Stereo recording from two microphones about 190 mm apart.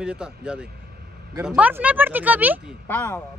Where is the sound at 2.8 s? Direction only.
10° left (ahead or behind).